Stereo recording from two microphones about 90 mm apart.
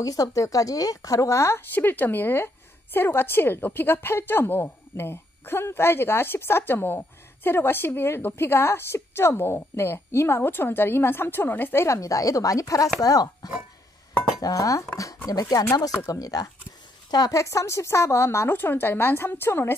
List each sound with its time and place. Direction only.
0.0 s a woman's voice: 40° left (ahead or behind); by 19.7 s 25° left (ahead or behind)